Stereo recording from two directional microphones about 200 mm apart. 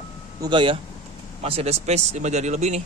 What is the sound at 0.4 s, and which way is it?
A man's voice, 25° right (ahead or behind).